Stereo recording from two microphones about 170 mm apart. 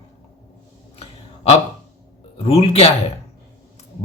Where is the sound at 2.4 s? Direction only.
35° left (ahead or behind).